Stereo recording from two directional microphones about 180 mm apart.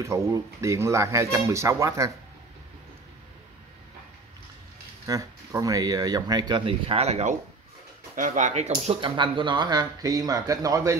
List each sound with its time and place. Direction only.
0.0 s speech: 15° right (ahead or behind)
5.0 s speech: 20° right (ahead or behind); by 8.7 s 40° right (ahead or behind)
8.8 s speech: 25° right (ahead or behind)